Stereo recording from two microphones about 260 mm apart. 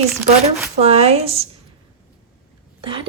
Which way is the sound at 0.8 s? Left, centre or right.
Right.